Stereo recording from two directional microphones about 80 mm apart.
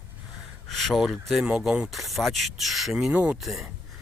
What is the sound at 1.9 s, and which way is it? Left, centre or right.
Speech, centre.